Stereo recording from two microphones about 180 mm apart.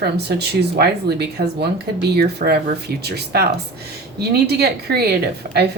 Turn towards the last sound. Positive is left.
turn(degrees=-60)  # may be behind; listen again after turning